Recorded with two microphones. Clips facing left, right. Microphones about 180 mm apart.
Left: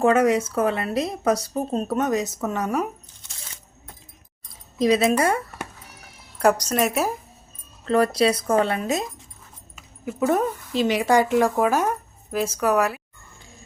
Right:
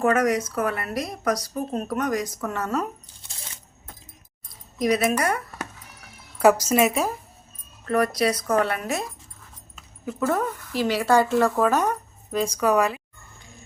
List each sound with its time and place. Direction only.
0.0 s speech: 25° left (ahead or behind)
4.8 s speech: 25° left (ahead or behind)
6.4 s speech: 5° right (ahead or behind)
7.9 s speech: 30° left (ahead or behind)
10.2 s speech: 20° left (ahead or behind)